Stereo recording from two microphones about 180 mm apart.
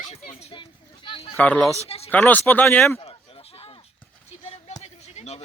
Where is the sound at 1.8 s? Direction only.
35° left (ahead or behind).